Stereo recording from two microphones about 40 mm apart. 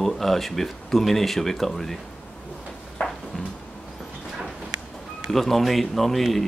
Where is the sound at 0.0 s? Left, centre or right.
Centre.